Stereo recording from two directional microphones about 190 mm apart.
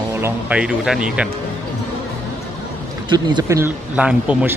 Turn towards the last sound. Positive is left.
turn(degrees=-5)  # may be behind; listen again after turning